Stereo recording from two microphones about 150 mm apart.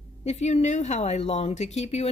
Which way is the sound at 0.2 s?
50° left (ahead or behind).